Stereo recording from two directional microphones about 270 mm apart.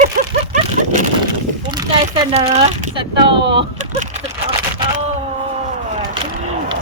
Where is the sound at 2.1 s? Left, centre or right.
Right.